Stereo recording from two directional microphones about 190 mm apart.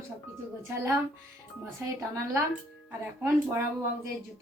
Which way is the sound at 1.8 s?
10° right (ahead or behind).